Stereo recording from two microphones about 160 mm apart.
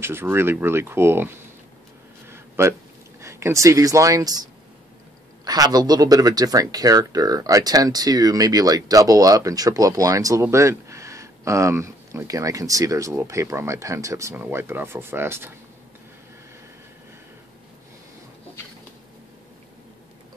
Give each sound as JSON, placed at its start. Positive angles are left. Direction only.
{"t": 0.0, "sound": "speech", "side_deg": -15}
{"t": 2.2, "sound": "a sound", "side_deg": -15}
{"t": 3.2, "sound": "speech", "side_deg": -15}
{"t": 5.4, "sound": "speech", "side_deg": -25}